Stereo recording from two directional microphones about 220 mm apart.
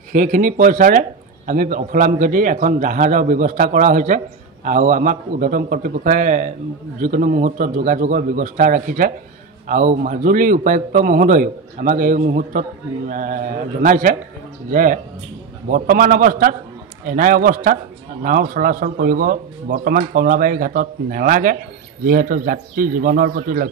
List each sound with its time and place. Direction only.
0.1 s a man's voice: 35° right (ahead or behind)